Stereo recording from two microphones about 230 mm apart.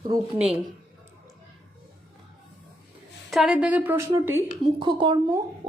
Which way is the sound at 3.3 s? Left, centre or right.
Centre.